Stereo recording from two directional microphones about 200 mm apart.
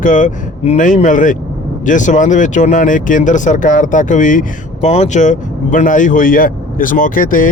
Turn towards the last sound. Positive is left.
turn(degrees=40)  # may be behind; listen again after turning